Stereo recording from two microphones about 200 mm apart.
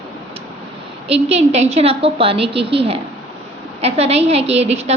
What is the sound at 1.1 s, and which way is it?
A woman's voice, 30° right (ahead or behind).